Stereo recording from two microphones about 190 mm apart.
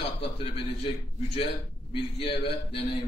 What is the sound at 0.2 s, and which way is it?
A man's voice, 30° left (ahead or behind).